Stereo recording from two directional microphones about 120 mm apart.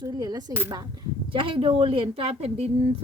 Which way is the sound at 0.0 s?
30° right (ahead or behind).